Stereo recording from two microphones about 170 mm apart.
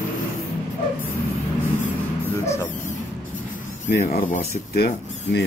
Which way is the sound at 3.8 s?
60° left (ahead or behind).